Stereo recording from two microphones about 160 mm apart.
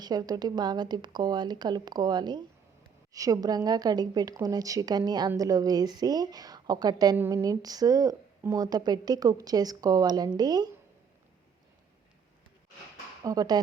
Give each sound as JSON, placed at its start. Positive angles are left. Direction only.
{"t": 0.0, "sound": "a woman's voice", "side_deg": -25}
{"t": 13.2, "sound": "a woman's voice", "side_deg": -25}